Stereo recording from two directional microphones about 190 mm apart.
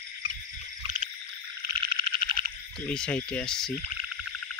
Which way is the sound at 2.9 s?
5° left (ahead or behind).